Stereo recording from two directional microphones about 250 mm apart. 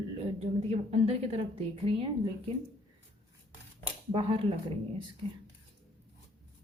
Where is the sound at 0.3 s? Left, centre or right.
Right.